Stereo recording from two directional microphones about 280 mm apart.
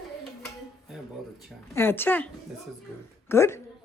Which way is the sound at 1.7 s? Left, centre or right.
Centre.